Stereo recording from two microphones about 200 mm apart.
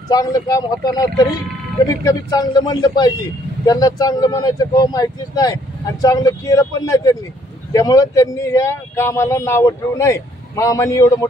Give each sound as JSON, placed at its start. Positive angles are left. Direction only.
{"t": 0.1, "sound": "speech", "side_deg": 20}